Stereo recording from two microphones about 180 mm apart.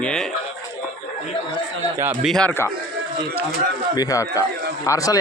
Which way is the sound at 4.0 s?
20° left (ahead or behind).